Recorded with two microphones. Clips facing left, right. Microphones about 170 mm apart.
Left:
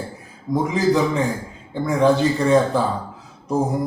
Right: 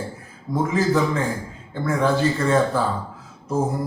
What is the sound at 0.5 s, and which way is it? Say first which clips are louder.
A man's voice: left 2 dB; 15° left (ahead or behind).